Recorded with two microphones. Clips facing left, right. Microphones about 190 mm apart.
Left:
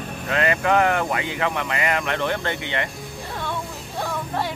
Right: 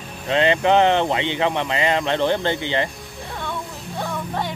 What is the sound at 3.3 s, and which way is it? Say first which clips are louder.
Music: even; centre (ahead or behind).